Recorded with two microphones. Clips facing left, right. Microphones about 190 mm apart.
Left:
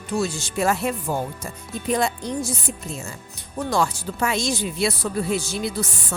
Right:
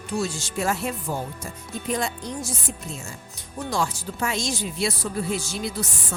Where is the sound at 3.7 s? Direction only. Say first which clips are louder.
Left 4 dB; 60° left (ahead or behind).